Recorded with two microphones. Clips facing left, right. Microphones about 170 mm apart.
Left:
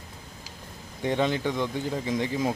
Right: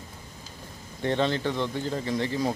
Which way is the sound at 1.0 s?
10° left (ahead or behind).